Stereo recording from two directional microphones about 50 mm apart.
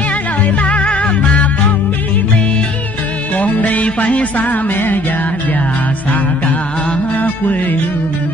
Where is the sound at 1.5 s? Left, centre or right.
Left.